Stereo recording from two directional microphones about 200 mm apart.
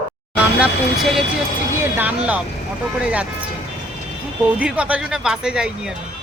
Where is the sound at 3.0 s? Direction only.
5° right (ahead or behind).